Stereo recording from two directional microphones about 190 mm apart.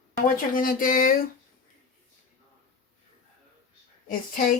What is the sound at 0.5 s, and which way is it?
Speech, 45° left (ahead or behind).